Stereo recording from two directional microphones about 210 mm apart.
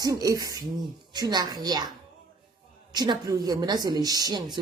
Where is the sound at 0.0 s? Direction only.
15° right (ahead or behind).